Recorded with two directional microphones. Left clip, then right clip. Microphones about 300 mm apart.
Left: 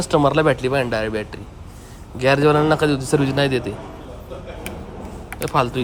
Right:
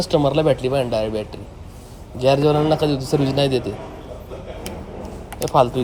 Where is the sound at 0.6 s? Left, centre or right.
Centre.